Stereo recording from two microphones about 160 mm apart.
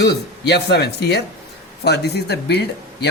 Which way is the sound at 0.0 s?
90° left.